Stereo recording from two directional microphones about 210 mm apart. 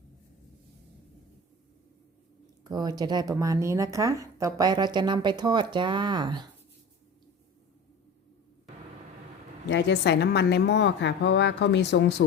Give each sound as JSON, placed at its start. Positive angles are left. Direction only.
{"t": 2.6, "sound": "speech", "side_deg": -20}
{"t": 9.6, "sound": "a woman's voice", "side_deg": 55}